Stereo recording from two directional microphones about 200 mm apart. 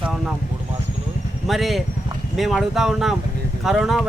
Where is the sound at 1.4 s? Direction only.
Centre (ahead or behind).